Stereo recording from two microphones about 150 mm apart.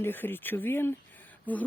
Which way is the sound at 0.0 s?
15° left (ahead or behind).